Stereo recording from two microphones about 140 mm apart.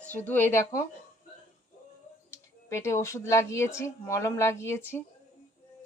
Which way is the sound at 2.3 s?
20° left (ahead or behind).